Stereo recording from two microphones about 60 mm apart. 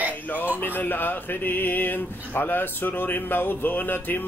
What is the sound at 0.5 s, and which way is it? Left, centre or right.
Speech, left.